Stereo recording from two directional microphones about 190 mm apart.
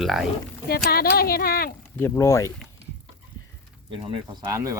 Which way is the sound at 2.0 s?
15° left (ahead or behind).